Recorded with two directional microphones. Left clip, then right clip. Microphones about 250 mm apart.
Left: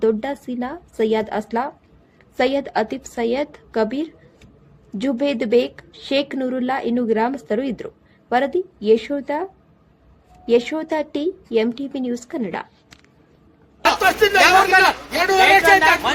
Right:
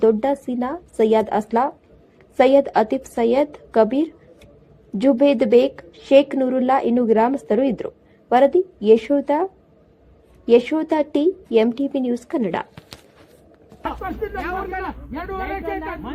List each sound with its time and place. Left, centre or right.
0.0 s a woman's voice: centre
14.0 s speech: left